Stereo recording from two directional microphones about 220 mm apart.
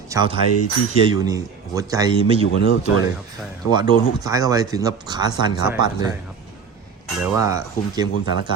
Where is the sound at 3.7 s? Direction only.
20° right (ahead or behind).